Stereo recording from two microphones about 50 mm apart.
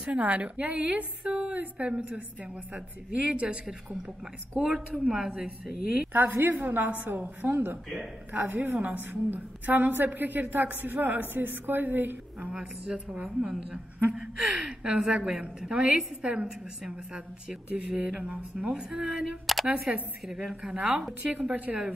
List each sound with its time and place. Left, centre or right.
0.0 s a woman's voice: right
5.1 s speech: centre
6.1 s a woman's voice: right
12.4 s a woman's voice: right
14.4 s a woman's voice: right
19.4 s a woman's voice: centre
20.6 s a woman's voice: right